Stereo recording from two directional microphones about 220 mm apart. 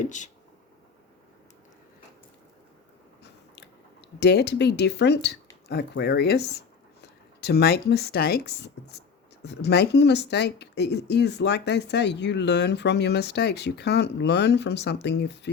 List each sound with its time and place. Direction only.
0.0 s speech: 35° left (ahead or behind)
4.2 s speech: 50° left (ahead or behind)